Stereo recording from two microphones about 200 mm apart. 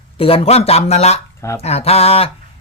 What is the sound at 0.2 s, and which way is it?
Speech, 30° left (ahead or behind).